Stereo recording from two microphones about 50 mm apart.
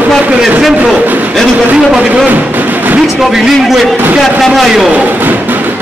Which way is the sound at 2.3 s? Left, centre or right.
Right.